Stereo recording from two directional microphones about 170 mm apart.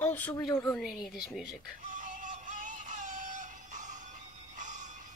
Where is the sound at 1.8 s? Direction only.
50° right (ahead or behind).